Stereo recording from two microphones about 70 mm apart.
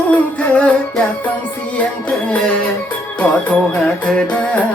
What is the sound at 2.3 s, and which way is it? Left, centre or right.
Music, centre.